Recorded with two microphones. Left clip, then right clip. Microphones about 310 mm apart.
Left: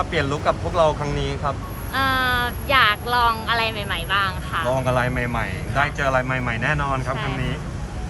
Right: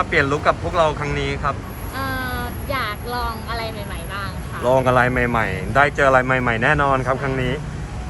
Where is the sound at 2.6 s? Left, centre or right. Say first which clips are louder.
Left 8 dB; centre.